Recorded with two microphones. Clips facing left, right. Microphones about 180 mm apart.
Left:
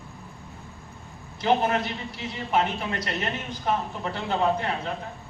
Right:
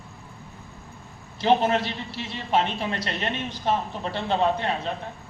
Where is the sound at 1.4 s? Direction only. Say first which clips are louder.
Right 2 dB; 30° right (ahead or behind).